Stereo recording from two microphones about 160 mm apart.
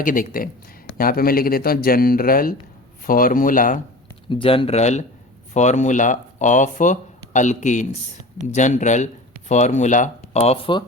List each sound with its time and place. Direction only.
0.0 s speech: 60° left (ahead or behind)
4.3 s speech: 35° left (ahead or behind)